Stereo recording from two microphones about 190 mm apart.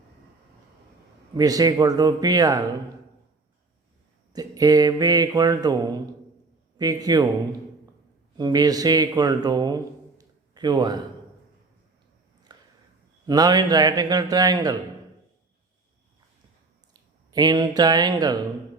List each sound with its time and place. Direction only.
1.4 s mantra: 20° right (ahead or behind)
4.3 s mantra: 20° right (ahead or behind)
8.4 s speech: 20° right (ahead or behind)
12.5 s a sound: 20° right (ahead or behind)
13.2 s mantra: 20° right (ahead or behind)
17.3 s mantra: 20° right (ahead or behind)